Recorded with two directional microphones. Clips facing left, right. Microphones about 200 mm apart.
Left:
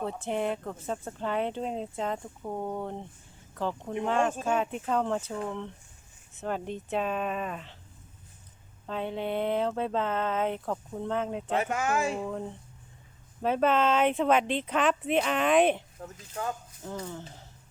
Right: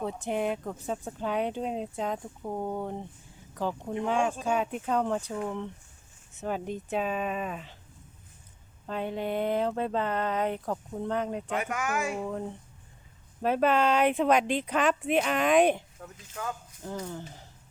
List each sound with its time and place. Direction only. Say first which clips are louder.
0.0 s speech: even; 5° right (ahead or behind)
8.9 s speech: even; 5° right (ahead or behind)
11.5 s speech: left 4 dB; 30° left (ahead or behind)
12.1 s speech: even; 5° right (ahead or behind)
16.0 s speech: left 3 dB; 35° left (ahead or behind)
17.0 s speech: right 1 dB; 5° right (ahead or behind)